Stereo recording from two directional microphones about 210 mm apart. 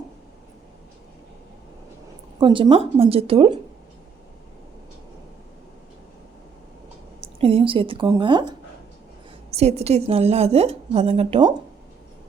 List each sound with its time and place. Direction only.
2.4 s a woman's voice: 25° right (ahead or behind)
7.2 s a woman's voice: 25° right (ahead or behind)
9.5 s a woman's voice: 30° right (ahead or behind)